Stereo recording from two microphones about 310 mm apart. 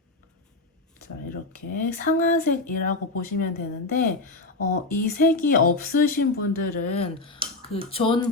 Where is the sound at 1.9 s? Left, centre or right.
Left.